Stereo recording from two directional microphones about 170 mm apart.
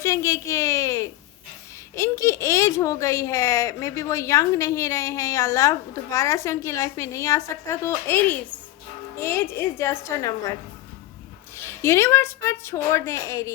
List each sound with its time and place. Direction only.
0.0 s a sound: 15° left (ahead or behind)
2.0 s speech: 15° left (ahead or behind)
11.5 s speech: 15° left (ahead or behind)